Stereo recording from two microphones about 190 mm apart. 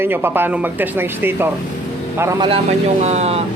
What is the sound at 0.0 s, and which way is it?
Speech, 10° right (ahead or behind).